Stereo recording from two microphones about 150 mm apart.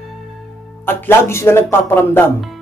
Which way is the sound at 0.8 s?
15° left (ahead or behind).